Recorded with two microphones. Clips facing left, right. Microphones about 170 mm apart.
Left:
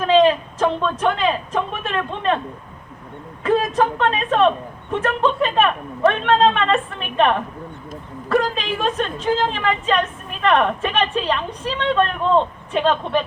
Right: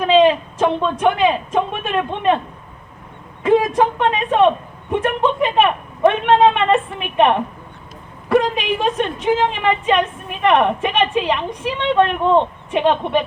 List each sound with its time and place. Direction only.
0.0 s speech: 15° right (ahead or behind)
3.4 s a woman's voice: 15° right (ahead or behind)